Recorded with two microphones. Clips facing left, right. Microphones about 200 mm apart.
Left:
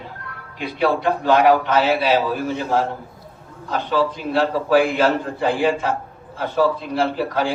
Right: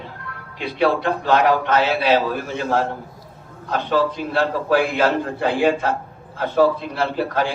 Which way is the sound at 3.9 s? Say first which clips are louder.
Even; 50° right (ahead or behind).